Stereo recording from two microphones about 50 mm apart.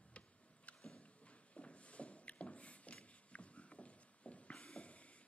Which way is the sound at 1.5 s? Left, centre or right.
Left.